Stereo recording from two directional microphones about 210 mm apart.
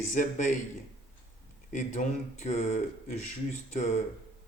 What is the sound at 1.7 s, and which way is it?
Speech, 35° left (ahead or behind).